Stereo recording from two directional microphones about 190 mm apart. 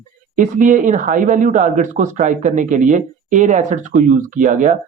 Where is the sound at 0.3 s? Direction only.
40° right (ahead or behind).